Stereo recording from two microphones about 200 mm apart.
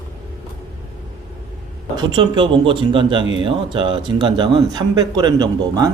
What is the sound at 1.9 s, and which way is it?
A man's voice, 25° right (ahead or behind).